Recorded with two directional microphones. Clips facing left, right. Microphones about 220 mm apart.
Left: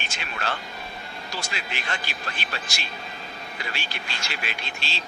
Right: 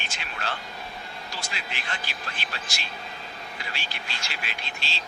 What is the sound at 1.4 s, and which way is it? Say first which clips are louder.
A man's voice: left 4 dB; 65° left (ahead or behind).